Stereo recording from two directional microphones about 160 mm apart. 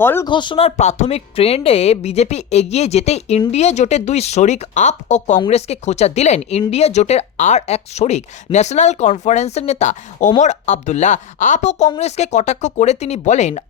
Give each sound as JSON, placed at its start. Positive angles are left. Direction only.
{"t": 0.0, "sound": "speech", "side_deg": 15}
{"t": 0.3, "sound": "speech", "side_deg": 30}